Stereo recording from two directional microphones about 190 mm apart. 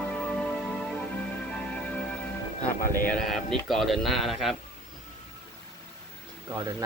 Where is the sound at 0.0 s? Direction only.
5° left (ahead or behind).